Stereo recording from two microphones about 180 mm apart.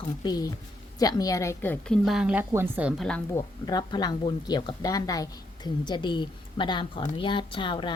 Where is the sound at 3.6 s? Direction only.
20° left (ahead or behind).